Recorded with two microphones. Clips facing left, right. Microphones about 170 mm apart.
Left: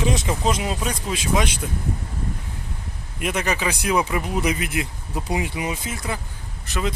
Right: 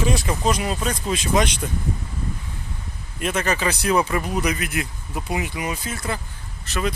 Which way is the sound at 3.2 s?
10° left (ahead or behind).